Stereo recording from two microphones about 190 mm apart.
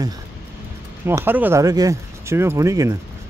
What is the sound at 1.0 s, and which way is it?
Speech, 10° right (ahead or behind).